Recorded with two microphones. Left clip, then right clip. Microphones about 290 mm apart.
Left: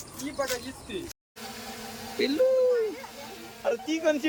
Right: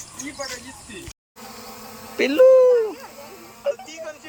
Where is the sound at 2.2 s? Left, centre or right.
Centre.